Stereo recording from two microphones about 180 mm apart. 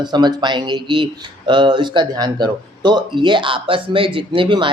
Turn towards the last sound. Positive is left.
turn(degrees=-25)  # may be behind; listen again after turning